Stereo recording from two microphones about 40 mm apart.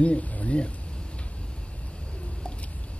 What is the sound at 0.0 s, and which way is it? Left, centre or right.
Speech, left.